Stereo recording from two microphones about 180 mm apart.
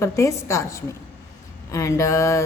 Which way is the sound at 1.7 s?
20° left (ahead or behind).